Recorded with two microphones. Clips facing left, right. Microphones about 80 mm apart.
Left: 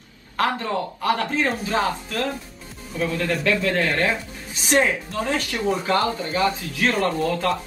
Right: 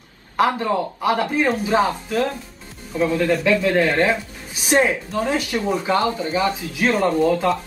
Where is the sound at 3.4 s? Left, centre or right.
Centre.